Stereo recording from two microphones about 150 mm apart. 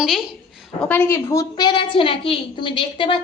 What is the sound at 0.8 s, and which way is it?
A woman's voice, 10° left (ahead or behind).